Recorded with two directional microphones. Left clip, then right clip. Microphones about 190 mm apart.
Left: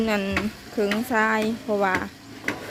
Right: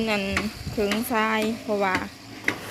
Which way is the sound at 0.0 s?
15° left (ahead or behind).